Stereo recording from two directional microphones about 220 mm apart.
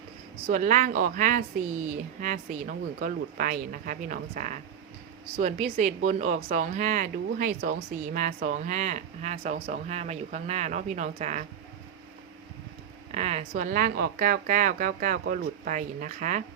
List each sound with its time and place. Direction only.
0.4 s speech: 35° right (ahead or behind)
13.1 s speech: 30° right (ahead or behind)